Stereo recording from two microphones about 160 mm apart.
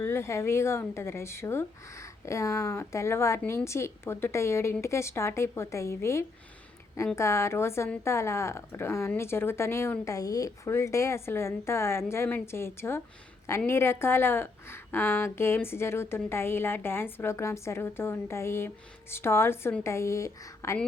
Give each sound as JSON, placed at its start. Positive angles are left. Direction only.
{"t": 0.0, "sound": "a woman's voice", "side_deg": 15}